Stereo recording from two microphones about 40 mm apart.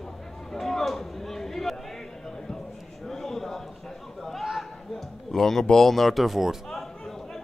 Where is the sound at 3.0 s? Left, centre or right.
Centre.